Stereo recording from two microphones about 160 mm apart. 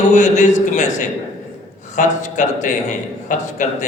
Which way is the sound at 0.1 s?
50° left (ahead or behind).